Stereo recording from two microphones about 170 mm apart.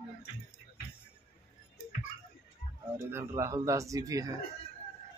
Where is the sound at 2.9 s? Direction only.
15° right (ahead or behind).